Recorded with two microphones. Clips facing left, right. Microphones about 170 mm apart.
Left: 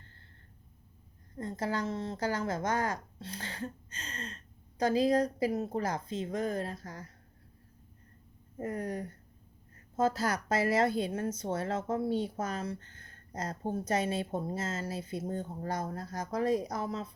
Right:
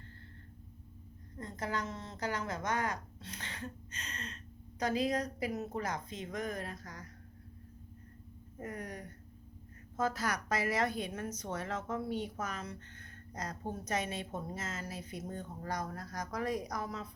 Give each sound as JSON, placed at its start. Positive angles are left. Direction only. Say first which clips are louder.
{"t": 1.4, "sound": "a woman's voice", "louder": "left 5 dB", "side_deg": 30}
{"t": 8.5, "sound": "a woman's voice", "louder": "left 7 dB", "side_deg": 30}